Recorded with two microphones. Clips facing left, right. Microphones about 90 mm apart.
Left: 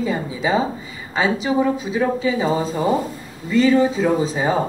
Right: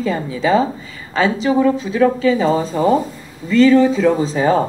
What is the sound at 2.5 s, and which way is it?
Speech, 35° right (ahead or behind).